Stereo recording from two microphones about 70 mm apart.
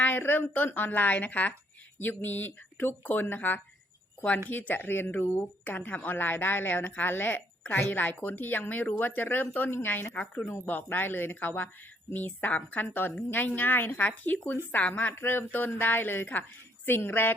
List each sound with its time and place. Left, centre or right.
0.0 s speech: left